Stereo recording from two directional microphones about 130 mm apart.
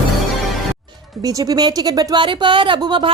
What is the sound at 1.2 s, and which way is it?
Speech, 30° right (ahead or behind).